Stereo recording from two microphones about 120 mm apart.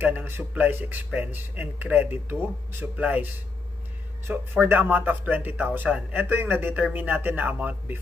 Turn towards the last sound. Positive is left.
turn(degrees=-15)  # may be behind; listen again after turning